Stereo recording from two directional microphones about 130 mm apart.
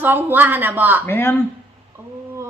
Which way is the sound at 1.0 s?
15° left (ahead or behind).